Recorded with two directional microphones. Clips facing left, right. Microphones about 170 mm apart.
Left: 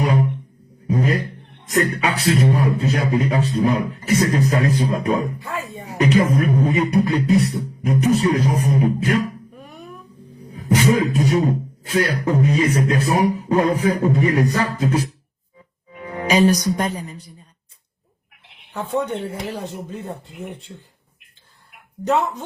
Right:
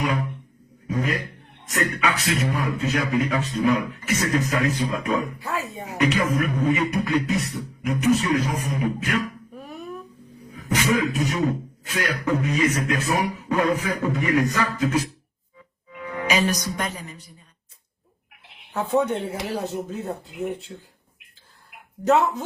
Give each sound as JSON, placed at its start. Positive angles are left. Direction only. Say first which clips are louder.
{"t": 0.0, "sound": "speech", "louder": "left 6 dB", "side_deg": 35}
{"t": 5.4, "sound": "speech", "louder": "even", "side_deg": 0}
{"t": 6.0, "sound": "speech", "louder": "left 5 dB", "side_deg": 35}
{"t": 10.5, "sound": "a woman's voice", "louder": "left 5 dB", "side_deg": 35}
{"t": 18.7, "sound": "speech", "louder": "right 1 dB", "side_deg": -5}
{"t": 22.0, "sound": "speech", "louder": "right 1 dB", "side_deg": 0}